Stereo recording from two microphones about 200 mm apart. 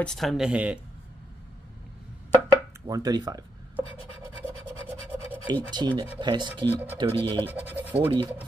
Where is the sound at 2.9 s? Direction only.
20° right (ahead or behind).